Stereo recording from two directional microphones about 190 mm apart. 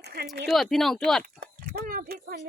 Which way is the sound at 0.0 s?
55° right (ahead or behind).